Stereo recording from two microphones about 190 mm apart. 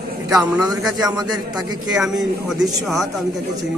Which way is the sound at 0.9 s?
20° right (ahead or behind).